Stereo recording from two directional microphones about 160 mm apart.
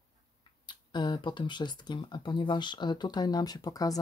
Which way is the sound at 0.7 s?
30° left (ahead or behind).